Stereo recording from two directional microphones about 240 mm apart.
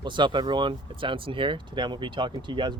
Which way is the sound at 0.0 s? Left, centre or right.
Centre.